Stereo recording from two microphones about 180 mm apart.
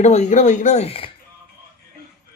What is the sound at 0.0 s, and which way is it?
Speech, 40° left (ahead or behind).